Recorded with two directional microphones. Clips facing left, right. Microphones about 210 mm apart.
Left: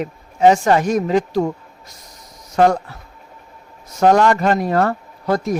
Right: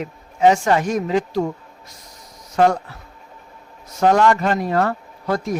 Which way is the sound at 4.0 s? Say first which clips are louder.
Left 2 dB; 40° left (ahead or behind).